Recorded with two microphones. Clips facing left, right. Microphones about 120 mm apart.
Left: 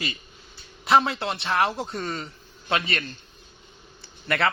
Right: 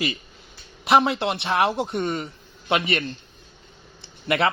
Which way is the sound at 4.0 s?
15° right (ahead or behind).